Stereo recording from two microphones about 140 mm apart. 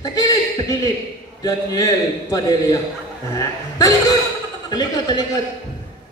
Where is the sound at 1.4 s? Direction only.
25° left (ahead or behind).